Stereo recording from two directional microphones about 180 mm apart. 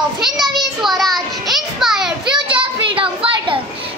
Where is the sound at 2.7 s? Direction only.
30° right (ahead or behind).